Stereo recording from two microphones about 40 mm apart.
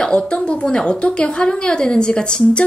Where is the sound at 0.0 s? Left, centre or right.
Left.